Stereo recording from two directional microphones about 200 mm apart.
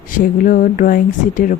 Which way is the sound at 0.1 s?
45° left (ahead or behind).